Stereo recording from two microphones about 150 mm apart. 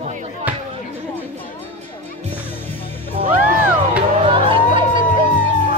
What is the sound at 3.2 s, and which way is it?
Music, 50° right (ahead or behind).